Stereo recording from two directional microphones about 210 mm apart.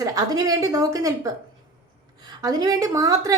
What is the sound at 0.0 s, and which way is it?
A woman's voice, 15° right (ahead or behind).